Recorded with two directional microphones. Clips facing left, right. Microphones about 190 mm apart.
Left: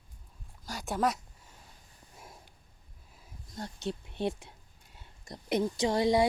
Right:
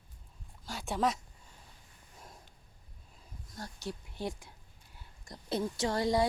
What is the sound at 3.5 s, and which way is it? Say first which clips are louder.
A woman's voice: left 5 dB; 25° left (ahead or behind).